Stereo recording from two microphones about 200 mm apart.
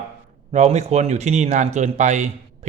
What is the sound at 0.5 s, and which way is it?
Speech, 35° right (ahead or behind).